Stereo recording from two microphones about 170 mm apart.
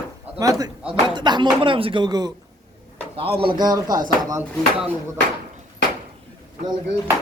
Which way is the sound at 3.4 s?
25° right (ahead or behind).